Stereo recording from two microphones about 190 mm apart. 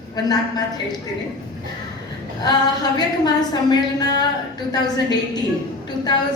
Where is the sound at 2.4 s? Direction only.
20° left (ahead or behind).